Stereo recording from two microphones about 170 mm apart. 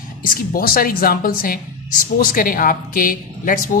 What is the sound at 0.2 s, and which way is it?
A woman's voice, 60° left (ahead or behind).